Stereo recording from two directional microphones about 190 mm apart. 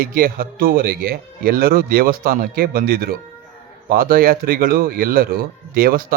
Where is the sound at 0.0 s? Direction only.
50° right (ahead or behind).